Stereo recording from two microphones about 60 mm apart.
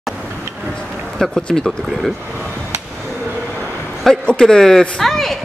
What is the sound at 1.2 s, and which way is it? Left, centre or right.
Speech, centre.